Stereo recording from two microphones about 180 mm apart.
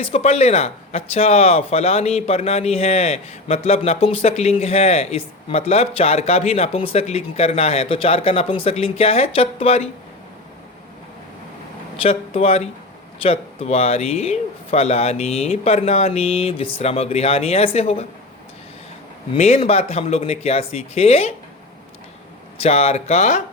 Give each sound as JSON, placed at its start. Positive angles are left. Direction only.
{"t": 0.0, "sound": "speech", "side_deg": 35}
{"t": 12.0, "sound": "speech", "side_deg": 35}
{"t": 19.3, "sound": "speech", "side_deg": 35}
{"t": 22.5, "sound": "speech", "side_deg": 35}